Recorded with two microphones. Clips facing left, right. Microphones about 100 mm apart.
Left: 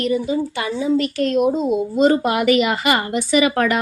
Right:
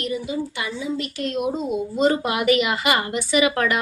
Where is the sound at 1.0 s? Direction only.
50° left (ahead or behind).